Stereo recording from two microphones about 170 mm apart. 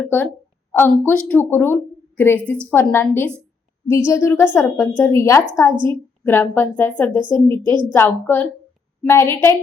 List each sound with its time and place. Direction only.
0.0 s a woman's voice: 10° left (ahead or behind)
5.7 s a woman's voice: 30° right (ahead or behind)
6.2 s speech: 10° left (ahead or behind)
7.1 s a woman's voice: 25° right (ahead or behind)
7.9 s speech: 15° left (ahead or behind)